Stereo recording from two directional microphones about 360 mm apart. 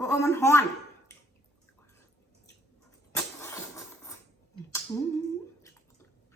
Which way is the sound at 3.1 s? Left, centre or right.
Centre.